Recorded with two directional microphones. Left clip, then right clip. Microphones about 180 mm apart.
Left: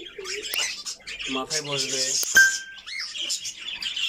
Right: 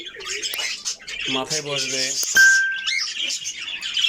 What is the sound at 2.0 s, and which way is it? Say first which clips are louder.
Music: even; centre (ahead or behind).